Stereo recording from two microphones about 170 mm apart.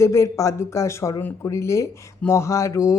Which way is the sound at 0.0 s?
15° left (ahead or behind).